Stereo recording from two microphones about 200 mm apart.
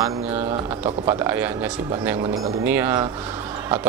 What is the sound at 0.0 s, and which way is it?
A man's voice, 15° right (ahead or behind).